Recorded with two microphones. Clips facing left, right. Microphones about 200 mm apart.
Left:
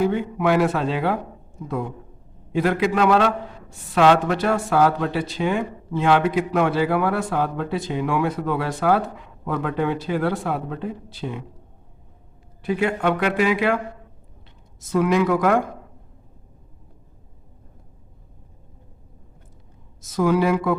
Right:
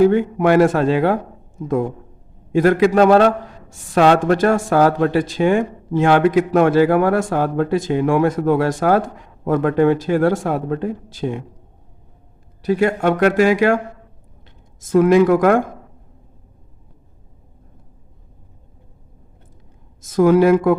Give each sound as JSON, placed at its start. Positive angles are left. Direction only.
{"t": 0.1, "sound": "speech", "side_deg": -45}
{"t": 12.6, "sound": "speech", "side_deg": -40}
{"t": 20.0, "sound": "speech", "side_deg": -50}